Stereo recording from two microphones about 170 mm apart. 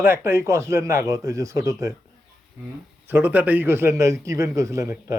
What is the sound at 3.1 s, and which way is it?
A man's voice, 10° right (ahead or behind).